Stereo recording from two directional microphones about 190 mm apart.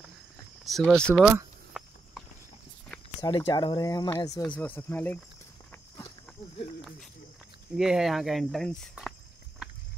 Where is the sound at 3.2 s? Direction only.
20° left (ahead or behind).